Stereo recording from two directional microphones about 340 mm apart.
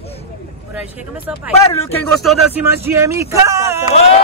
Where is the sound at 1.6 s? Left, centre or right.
Centre.